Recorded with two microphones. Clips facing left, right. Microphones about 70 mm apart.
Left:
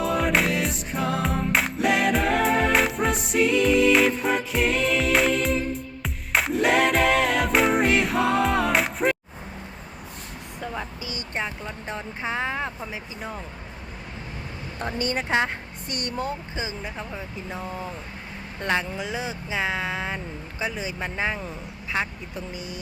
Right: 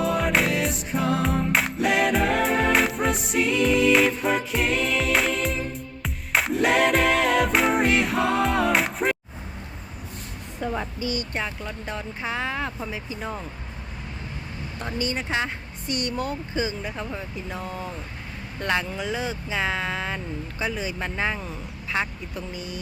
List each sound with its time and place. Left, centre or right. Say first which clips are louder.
0.0 s music: even; centre
11.1 s speech: left 2 dB; left
14.9 s speech: left 3 dB; left
16.1 s speech: right 2 dB; left
17.0 s speech: right 2 dB; centre